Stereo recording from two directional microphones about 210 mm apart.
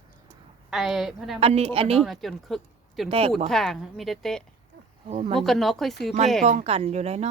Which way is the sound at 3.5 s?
Centre (ahead or behind).